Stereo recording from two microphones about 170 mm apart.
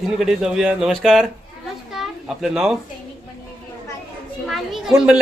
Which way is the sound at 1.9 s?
Centre (ahead or behind).